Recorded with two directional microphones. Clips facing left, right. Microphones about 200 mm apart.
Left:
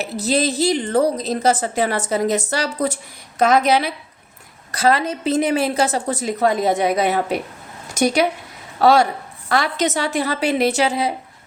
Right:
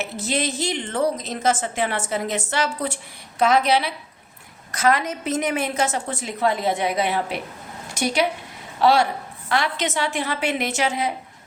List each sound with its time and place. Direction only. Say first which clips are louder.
0.0 s a woman's voice: left 5 dB; 35° left (ahead or behind)
4.7 s a woman's voice: left 3 dB; 30° left (ahead or behind)